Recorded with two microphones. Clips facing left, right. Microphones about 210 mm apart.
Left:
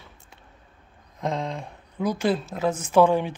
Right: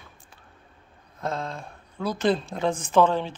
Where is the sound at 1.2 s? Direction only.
15° left (ahead or behind).